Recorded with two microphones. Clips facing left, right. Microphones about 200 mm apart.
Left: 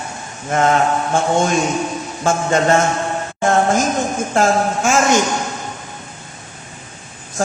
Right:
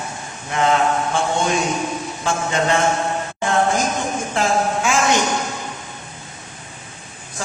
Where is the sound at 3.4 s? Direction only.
45° left (ahead or behind).